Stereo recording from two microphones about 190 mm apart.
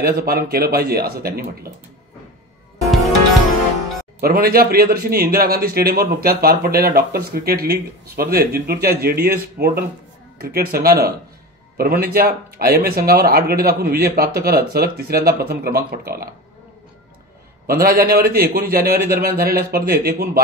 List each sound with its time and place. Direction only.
0.0 s a man's voice: 55° right (ahead or behind)
4.2 s a man's voice: 50° right (ahead or behind)
17.6 s a man's voice: 55° right (ahead or behind)